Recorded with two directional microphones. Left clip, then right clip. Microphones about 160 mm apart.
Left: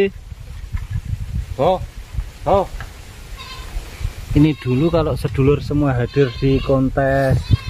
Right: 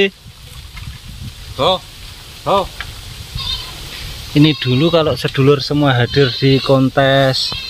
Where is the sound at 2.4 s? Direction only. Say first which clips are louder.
Right 1 dB; 50° left (ahead or behind).